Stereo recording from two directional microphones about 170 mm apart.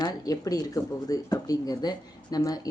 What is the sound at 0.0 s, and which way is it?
Speech, 20° left (ahead or behind).